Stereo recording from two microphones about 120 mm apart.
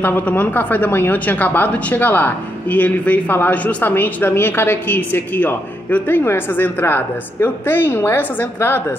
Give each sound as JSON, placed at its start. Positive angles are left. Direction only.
{"t": 0.0, "sound": "speech", "side_deg": 15}